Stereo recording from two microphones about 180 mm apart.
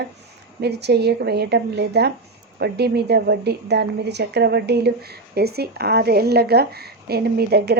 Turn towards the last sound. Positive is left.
turn(degrees=-65)  # may be behind; listen again after turning